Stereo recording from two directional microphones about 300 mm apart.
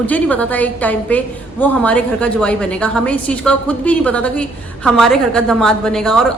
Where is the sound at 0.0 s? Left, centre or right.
Centre.